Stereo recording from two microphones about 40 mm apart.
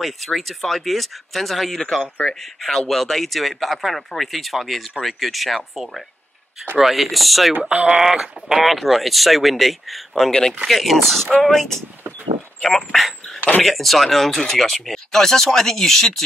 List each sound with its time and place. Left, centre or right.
0.0 s speech: centre
6.8 s speech: centre
7.7 s speech: right
8.0 s speech: centre
8.6 s speech: centre